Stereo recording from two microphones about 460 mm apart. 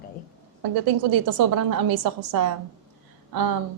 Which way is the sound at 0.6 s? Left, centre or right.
Right.